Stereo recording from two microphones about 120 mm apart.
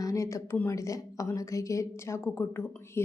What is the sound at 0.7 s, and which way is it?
A woman's voice, 25° left (ahead or behind).